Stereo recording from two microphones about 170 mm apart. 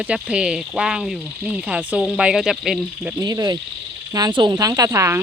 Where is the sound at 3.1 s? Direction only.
20° right (ahead or behind).